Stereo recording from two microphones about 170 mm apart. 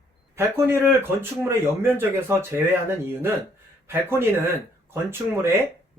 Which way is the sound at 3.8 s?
15° right (ahead or behind).